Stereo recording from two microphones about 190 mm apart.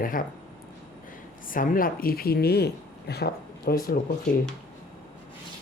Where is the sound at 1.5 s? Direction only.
45° left (ahead or behind).